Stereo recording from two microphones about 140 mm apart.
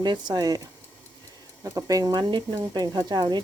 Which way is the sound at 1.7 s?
25° right (ahead or behind).